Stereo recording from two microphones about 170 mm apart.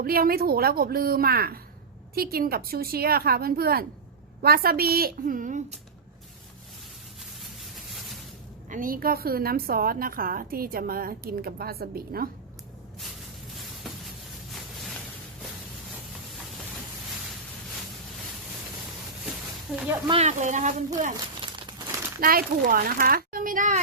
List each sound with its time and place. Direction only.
0.0 s a woman's voice: 60° right (ahead or behind)
8.7 s a woman's voice: 55° right (ahead or behind)
19.7 s speech: 5° right (ahead or behind)
20.1 s speech: 40° right (ahead or behind)
21.4 s crumpling: 25° right (ahead or behind)
22.2 s a woman's voice: 60° right (ahead or behind)